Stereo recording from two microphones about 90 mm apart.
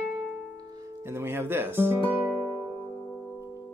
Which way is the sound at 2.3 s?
15° left (ahead or behind).